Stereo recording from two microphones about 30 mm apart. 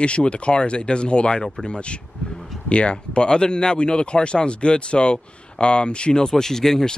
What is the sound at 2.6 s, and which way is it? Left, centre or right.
Speech, left.